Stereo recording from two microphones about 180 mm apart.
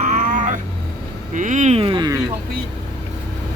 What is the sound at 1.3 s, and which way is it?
Speech, 45° right (ahead or behind).